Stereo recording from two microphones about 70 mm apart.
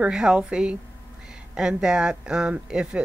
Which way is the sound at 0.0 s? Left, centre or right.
Centre.